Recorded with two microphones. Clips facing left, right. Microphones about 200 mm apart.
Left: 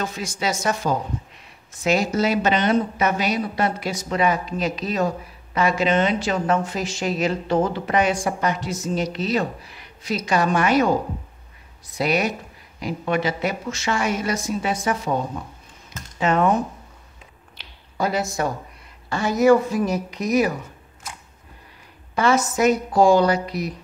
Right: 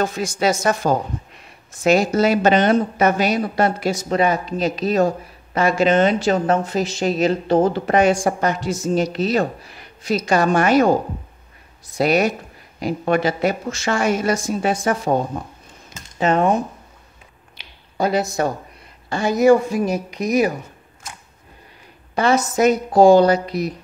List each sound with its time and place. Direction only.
0.0 s speech: 50° right (ahead or behind)
12.0 s speech: 45° right (ahead or behind)
15.9 s speech: 30° right (ahead or behind)
18.4 s speech: 30° right (ahead or behind)
19.0 s speech: 15° right (ahead or behind)
22.9 s speech: 25° right (ahead or behind)
23.5 s speech: centre (ahead or behind)